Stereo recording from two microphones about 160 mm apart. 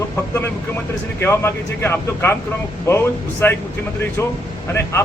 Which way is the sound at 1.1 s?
15° left (ahead or behind).